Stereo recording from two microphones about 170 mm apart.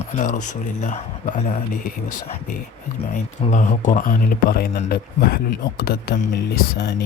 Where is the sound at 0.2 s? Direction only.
45° left (ahead or behind).